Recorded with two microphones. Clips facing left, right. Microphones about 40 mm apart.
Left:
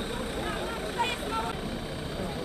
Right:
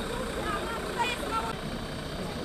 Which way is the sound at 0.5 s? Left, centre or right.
Left.